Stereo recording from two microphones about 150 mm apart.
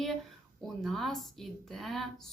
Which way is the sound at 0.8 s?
Centre (ahead or behind).